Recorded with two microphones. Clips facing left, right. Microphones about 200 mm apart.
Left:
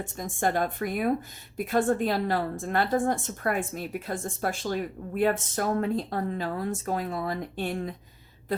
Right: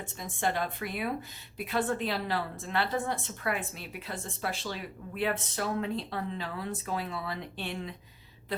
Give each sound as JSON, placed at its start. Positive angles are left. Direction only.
{"t": 0.2, "sound": "a woman's voice", "side_deg": 45}